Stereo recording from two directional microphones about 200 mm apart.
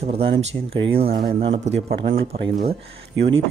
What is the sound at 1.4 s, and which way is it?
Speech, 30° right (ahead or behind).